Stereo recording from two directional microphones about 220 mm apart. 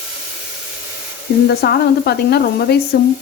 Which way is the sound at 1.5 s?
50° left (ahead or behind).